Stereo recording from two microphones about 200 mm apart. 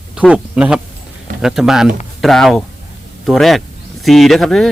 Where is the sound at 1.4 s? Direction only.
Centre (ahead or behind).